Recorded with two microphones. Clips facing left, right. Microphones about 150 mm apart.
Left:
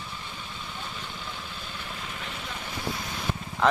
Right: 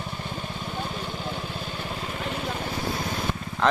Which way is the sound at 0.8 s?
55° right (ahead or behind).